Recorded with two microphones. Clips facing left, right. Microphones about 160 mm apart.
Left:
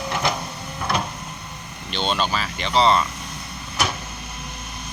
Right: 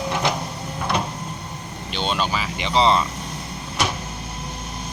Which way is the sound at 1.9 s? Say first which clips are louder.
Even; 10° right (ahead or behind).